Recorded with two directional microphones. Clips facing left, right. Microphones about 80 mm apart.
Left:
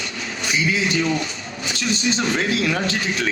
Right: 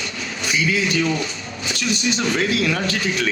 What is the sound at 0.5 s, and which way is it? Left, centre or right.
Speech, left.